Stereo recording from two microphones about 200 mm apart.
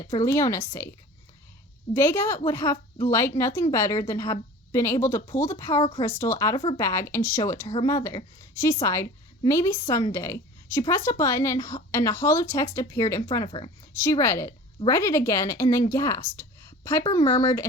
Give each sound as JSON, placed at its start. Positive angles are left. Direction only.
{"t": 0.3, "sound": "a woman's voice", "side_deg": 15}